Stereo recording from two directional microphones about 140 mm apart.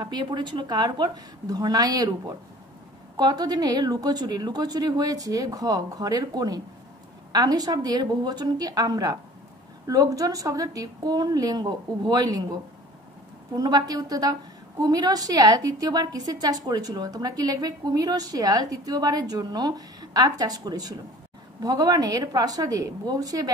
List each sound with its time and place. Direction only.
0.0 s a woman's voice: 30° right (ahead or behind)
13.6 s a woman's voice: 30° right (ahead or behind)